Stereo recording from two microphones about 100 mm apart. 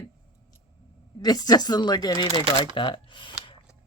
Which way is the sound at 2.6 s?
55° left (ahead or behind).